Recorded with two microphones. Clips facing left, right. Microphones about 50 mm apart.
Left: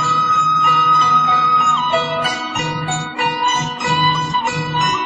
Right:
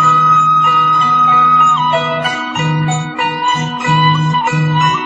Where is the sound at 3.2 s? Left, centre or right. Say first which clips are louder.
Right 2 dB; centre.